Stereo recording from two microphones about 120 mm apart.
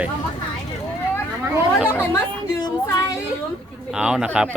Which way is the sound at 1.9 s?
15° left (ahead or behind).